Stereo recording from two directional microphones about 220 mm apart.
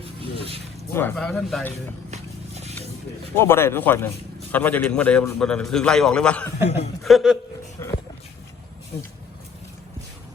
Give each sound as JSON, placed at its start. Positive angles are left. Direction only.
{"t": 0.0, "sound": "a sound", "side_deg": -25}
{"t": 0.9, "sound": "a man's voice", "side_deg": 5}
{"t": 3.3, "sound": "a man's voice", "side_deg": 10}
{"t": 6.7, "sound": "speech", "side_deg": 30}
{"t": 7.0, "sound": "a man's voice", "side_deg": 0}
{"t": 7.8, "sound": "a sound", "side_deg": 10}